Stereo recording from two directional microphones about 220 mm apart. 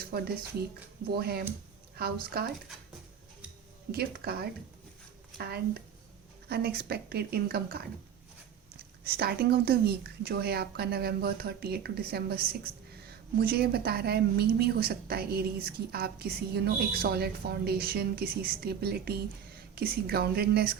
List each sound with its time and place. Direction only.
0.0 s a woman's voice: 45° right (ahead or behind)
3.9 s a woman's voice: 45° right (ahead or behind)
6.5 s a woman's voice: 45° right (ahead or behind)
9.0 s a woman's voice: 45° right (ahead or behind)